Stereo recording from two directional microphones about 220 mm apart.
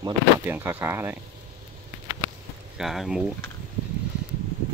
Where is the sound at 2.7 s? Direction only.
Centre (ahead or behind).